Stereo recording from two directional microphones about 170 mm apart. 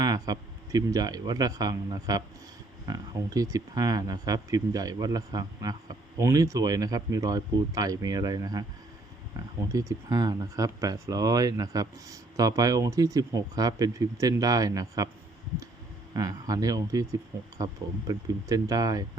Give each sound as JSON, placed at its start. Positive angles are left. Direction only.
{"t": 0.0, "sound": "speech", "side_deg": -25}
{"t": 9.7, "sound": "speech", "side_deg": -20}
{"t": 16.1, "sound": "speech", "side_deg": -20}